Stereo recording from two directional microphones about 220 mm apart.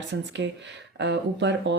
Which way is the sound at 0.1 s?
55° right (ahead or behind).